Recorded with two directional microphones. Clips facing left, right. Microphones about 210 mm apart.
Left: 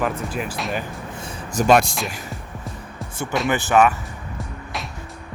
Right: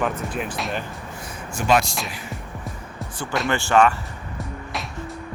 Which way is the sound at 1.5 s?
50° left (ahead or behind).